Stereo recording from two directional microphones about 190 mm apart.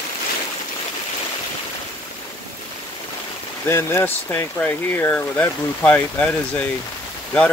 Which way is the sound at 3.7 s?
15° left (ahead or behind).